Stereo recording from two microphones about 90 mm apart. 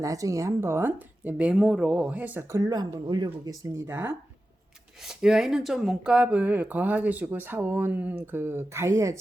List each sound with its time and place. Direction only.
0.0 s speech: 40° right (ahead or behind); by 2.4 s 15° right (ahead or behind)
2.5 s speech: 45° right (ahead or behind)
3.8 s speech: 25° right (ahead or behind)
5.0 s speech: 5° right (ahead or behind); by 9.1 s 35° right (ahead or behind)